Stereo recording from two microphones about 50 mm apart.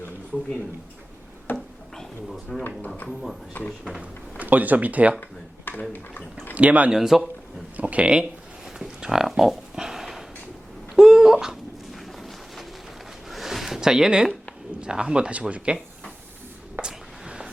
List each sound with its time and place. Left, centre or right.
1.5 s drawer open or close: centre
3.1 s speech: centre
3.6 s speech: left
4.0 s speech: right
5.7 s a sound: left
6.5 s speech: right
6.9 s a man's voice: centre
7.8 s speech: right
9.0 s a sound: centre
11.9 s a sound: centre
14.8 s speech: centre
16.8 s a sound: centre